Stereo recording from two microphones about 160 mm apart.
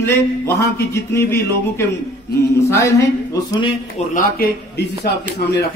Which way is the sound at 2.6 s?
15° left (ahead or behind).